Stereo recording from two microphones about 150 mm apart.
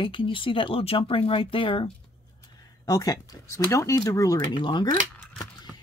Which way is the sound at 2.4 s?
25° left (ahead or behind).